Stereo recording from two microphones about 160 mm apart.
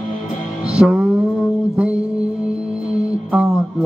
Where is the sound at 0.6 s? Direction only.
5° right (ahead or behind).